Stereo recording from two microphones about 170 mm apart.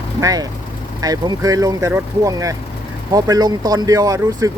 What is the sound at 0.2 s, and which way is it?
Speech, 20° right (ahead or behind).